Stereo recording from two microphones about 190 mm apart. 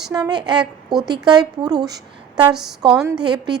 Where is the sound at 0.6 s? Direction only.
Centre (ahead or behind).